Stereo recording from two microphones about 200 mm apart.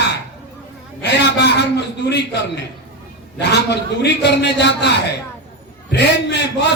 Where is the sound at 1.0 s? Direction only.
60° left (ahead or behind).